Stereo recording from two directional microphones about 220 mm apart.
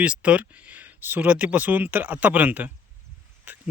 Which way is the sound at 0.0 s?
5° right (ahead or behind).